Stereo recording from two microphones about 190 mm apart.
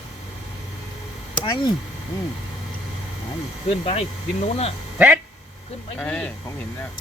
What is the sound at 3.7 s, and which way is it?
Speech, 30° left (ahead or behind).